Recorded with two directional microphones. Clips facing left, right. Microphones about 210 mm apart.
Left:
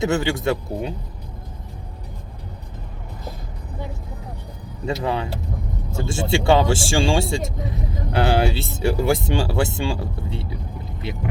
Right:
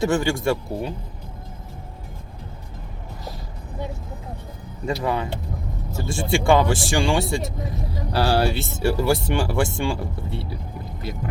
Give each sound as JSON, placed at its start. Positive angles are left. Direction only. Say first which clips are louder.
{"t": 0.0, "sound": "speech", "louder": "even", "side_deg": 20}
{"t": 4.9, "sound": "speech", "louder": "even", "side_deg": 25}